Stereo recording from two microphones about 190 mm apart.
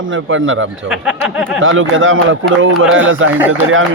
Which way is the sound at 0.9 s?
5° right (ahead or behind).